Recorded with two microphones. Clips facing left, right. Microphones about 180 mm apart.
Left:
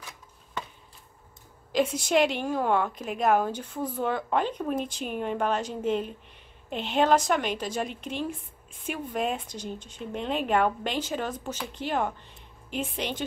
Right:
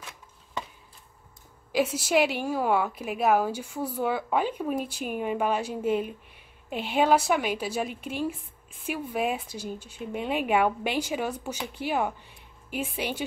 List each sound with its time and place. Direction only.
1.7 s a woman's voice: 5° right (ahead or behind)